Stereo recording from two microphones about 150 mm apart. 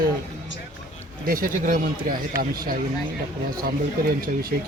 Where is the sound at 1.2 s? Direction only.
70° right (ahead or behind).